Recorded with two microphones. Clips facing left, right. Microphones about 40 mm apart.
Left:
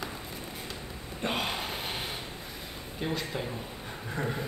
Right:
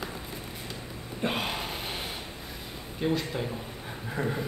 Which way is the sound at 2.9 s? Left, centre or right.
Centre.